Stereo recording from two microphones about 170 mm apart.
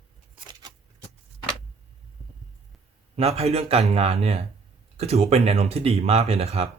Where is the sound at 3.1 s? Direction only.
35° right (ahead or behind).